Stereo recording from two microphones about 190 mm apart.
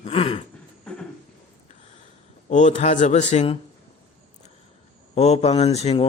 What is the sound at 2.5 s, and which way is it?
A man's voice, 40° left (ahead or behind).